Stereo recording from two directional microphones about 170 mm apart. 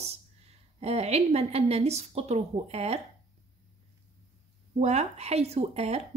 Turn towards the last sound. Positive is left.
turn(degrees=-40)  # may be behind; listen again after turning